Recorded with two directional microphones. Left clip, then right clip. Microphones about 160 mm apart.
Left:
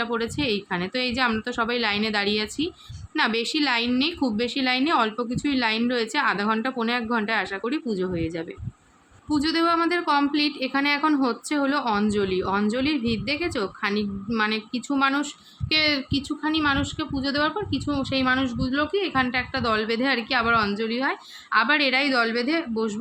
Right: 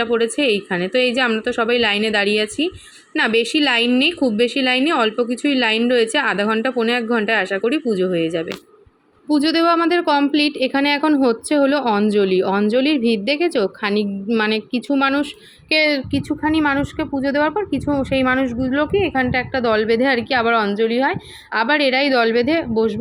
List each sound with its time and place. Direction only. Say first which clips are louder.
0.0 s a woman's voice: right 9 dB; 15° right (ahead or behind)
9.3 s a woman's voice: right 6 dB; 25° right (ahead or behind)